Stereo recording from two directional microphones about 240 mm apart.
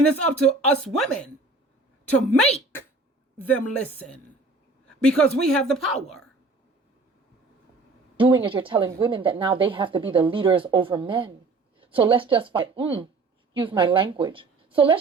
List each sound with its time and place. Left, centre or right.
0.1 s a woman's voice: centre
3.3 s a woman's voice: centre
8.1 s a woman's voice: right